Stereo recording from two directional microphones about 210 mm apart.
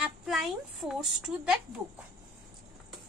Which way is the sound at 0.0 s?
Centre (ahead or behind).